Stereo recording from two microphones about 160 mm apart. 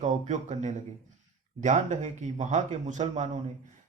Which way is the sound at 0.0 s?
50° right (ahead or behind).